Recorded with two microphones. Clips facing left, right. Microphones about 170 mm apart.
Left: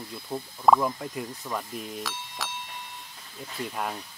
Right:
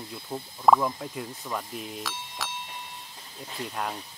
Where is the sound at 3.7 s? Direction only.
Centre (ahead or behind).